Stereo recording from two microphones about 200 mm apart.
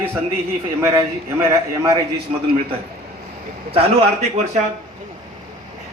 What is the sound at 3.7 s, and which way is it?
Speech, 30° right (ahead or behind).